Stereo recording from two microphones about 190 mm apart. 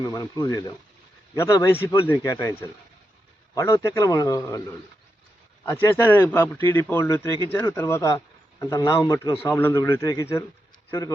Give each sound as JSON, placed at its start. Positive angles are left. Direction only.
{"t": 0.0, "sound": "a man's voice", "side_deg": 20}
{"t": 5.6, "sound": "a man's voice", "side_deg": 10}